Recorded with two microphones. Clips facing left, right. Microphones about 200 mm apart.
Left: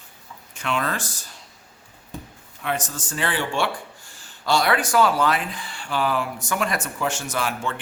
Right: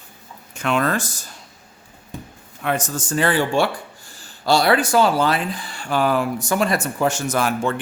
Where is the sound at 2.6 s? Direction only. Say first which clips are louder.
Right 4 dB; 50° right (ahead or behind).